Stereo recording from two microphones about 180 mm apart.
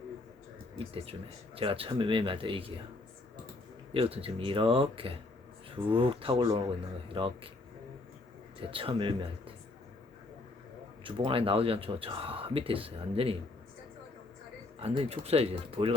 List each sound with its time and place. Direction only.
1.5 s speech: 30° right (ahead or behind)
3.9 s speech: 30° right (ahead or behind)
8.6 s speech: 30° right (ahead or behind)
11.0 s speech: 30° right (ahead or behind)
14.8 s speech: 30° right (ahead or behind)